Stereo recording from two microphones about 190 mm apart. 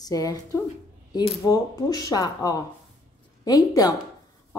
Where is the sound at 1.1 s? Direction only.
30° left (ahead or behind).